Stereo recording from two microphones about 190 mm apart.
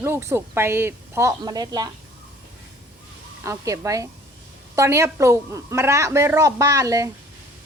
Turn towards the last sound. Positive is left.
turn(degrees=-15)  # may be behind; listen again after turning